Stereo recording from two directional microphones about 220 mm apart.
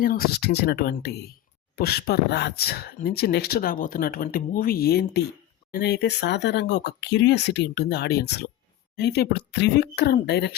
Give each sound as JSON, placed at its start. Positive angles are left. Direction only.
{"t": 0.0, "sound": "speech", "side_deg": 40}